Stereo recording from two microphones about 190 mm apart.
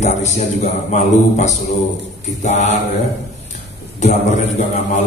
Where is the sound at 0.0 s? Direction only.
35° left (ahead or behind).